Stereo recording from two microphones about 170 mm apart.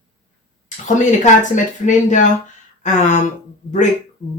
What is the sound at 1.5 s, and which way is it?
Speech, 45° left (ahead or behind).